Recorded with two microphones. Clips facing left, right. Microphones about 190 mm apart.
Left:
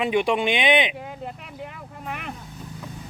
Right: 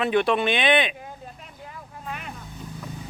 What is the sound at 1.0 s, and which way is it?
Vehicle, 80° left.